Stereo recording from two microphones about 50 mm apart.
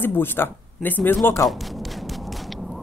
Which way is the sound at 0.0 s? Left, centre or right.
Left.